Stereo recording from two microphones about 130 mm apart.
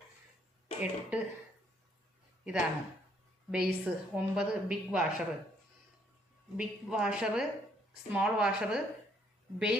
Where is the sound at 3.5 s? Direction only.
5° right (ahead or behind).